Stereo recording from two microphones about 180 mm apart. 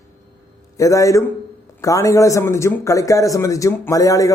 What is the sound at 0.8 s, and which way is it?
A man's voice, 20° left (ahead or behind).